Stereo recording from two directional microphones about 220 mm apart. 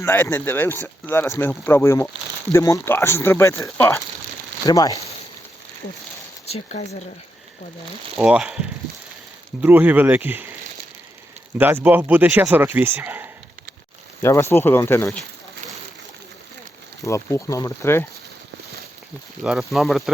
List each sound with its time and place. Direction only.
0.0 s speech: 10° left (ahead or behind)
6.4 s a sound: 30° left (ahead or behind)
8.1 s speech: 5° right (ahead or behind)
11.5 s speech: 10° right (ahead or behind)
14.2 s speech: 10° left (ahead or behind)
17.1 s speech: 15° left (ahead or behind)
19.4 s speech: centre (ahead or behind)